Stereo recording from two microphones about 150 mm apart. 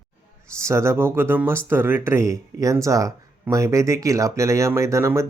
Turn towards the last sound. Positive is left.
turn(degrees=-20)  # may be behind; listen again after turning